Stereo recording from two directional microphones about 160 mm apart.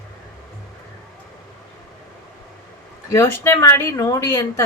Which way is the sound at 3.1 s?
15° left (ahead or behind).